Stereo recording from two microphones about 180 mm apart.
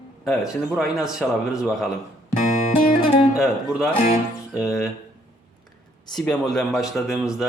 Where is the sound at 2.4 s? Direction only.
50° left (ahead or behind).